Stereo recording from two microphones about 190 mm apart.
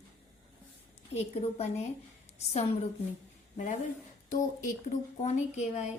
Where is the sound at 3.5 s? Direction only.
40° left (ahead or behind).